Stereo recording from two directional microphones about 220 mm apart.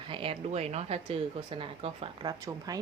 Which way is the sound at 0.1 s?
25° right (ahead or behind).